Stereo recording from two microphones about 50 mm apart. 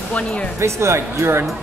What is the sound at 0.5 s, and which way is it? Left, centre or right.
Speech, right.